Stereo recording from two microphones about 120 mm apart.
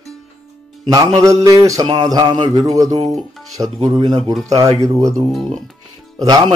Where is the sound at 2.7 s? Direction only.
30° right (ahead or behind).